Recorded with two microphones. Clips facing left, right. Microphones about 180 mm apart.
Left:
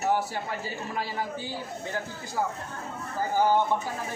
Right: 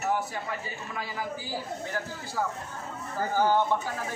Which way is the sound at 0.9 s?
30° left (ahead or behind).